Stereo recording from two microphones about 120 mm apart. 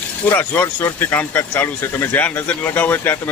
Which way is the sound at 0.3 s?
15° left (ahead or behind).